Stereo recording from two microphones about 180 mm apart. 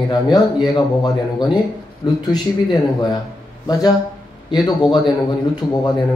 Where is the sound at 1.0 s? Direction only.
25° left (ahead or behind).